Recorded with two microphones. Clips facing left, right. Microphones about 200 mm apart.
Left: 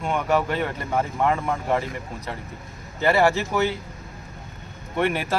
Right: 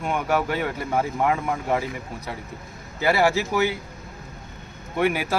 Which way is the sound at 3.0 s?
5° right (ahead or behind).